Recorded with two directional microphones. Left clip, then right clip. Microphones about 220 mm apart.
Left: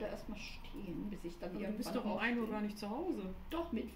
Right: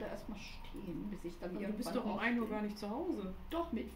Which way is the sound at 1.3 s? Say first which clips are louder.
Right 1 dB; 15° left (ahead or behind).